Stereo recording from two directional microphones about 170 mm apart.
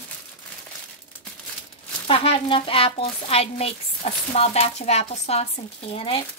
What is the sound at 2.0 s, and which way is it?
A child's voice, 30° left (ahead or behind).